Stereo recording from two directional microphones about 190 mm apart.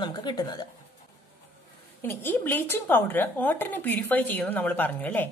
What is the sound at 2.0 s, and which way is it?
Speech, 10° left (ahead or behind).